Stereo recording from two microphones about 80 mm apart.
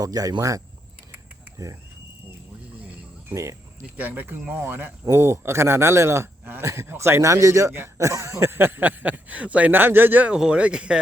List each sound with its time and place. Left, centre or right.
0.0 s speech: right
3.2 s music: right
3.9 s speech: right
10.3 s speech: centre